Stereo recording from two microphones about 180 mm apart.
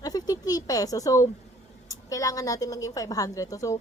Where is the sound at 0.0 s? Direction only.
20° left (ahead or behind).